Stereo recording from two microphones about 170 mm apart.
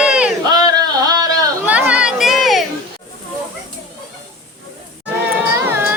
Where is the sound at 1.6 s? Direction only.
10° right (ahead or behind).